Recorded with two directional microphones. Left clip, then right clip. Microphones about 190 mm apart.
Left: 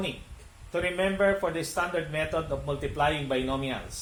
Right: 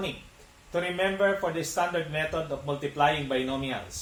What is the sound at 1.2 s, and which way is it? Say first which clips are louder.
Speech: left 2 dB; 50° left (ahead or behind).